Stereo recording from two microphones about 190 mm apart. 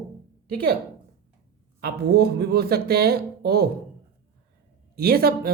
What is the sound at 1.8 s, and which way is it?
Speech, 55° right (ahead or behind).